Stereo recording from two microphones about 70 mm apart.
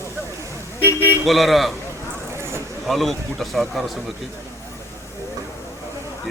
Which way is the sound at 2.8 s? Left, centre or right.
Centre.